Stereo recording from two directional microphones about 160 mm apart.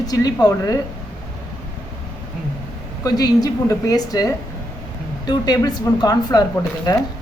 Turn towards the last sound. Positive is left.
turn(degrees=25)  # may be behind; listen again after turning